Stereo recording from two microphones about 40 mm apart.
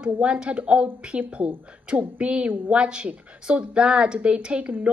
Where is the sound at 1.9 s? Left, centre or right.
Right.